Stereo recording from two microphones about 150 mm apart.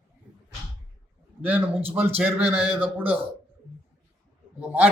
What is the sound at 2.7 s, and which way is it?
Speech, 10° right (ahead or behind).